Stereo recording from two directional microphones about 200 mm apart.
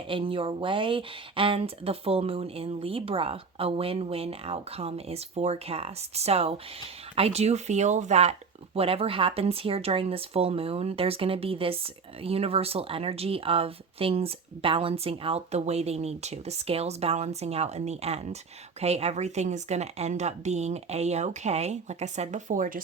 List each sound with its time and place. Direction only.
0.1 s a woman's voice: 25° right (ahead or behind)